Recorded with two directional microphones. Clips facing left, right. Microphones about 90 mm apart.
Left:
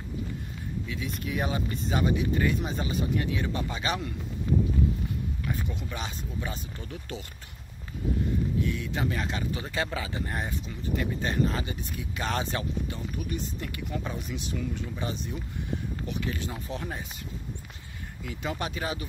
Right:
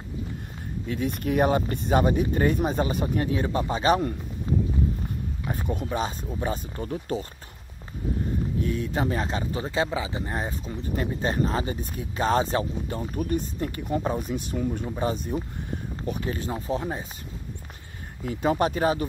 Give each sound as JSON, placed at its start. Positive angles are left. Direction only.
{"t": 0.8, "sound": "speech", "side_deg": -50}
{"t": 3.3, "sound": "speech", "side_deg": -35}
{"t": 5.5, "sound": "speech", "side_deg": -45}
{"t": 8.5, "sound": "speech", "side_deg": -40}
{"t": 9.8, "sound": "speech", "side_deg": -20}
{"t": 18.2, "sound": "speech", "side_deg": -40}